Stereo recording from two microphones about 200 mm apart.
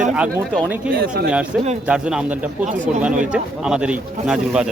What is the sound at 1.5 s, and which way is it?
Speech, 5° right (ahead or behind).